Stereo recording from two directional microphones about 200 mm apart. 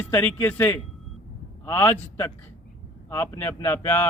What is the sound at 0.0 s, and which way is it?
Speech, 10° left (ahead or behind).